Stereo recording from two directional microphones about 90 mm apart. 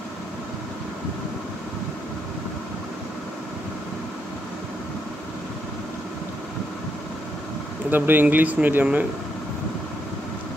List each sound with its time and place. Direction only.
7.9 s speech: 20° right (ahead or behind)